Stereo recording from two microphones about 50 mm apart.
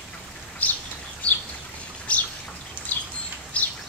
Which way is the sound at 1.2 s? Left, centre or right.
Left.